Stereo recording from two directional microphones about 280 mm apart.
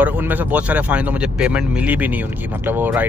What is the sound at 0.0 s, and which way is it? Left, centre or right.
Speech, centre.